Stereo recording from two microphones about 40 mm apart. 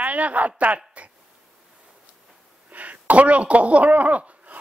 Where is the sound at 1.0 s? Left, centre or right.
Right.